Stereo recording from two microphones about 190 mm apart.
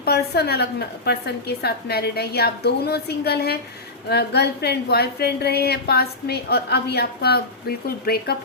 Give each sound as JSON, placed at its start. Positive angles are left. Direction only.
{"t": 0.0, "sound": "a woman's voice", "side_deg": 55}